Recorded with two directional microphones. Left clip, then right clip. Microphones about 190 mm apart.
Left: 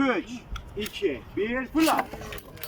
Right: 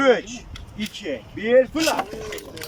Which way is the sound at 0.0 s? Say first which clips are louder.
Right 8 dB; 35° right (ahead or behind).